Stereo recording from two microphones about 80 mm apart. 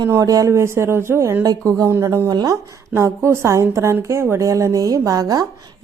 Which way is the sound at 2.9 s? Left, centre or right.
Right.